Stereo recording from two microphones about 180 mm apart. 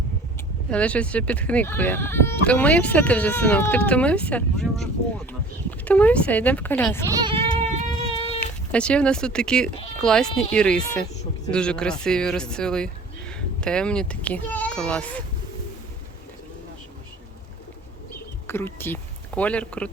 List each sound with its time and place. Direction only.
0.7 s speech: 5° left (ahead or behind)
7.3 s a sound: 30° right (ahead or behind)
8.7 s speech: 5° left (ahead or behind)
18.4 s speech: 10° left (ahead or behind)